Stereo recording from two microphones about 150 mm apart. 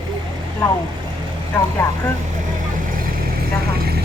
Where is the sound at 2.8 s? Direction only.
65° right (ahead or behind).